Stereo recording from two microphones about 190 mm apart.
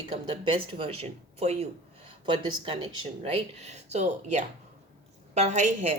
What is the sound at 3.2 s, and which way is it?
A woman's voice, 35° right (ahead or behind).